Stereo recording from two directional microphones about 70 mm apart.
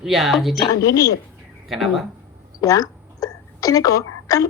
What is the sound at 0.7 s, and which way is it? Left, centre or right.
Speech, left.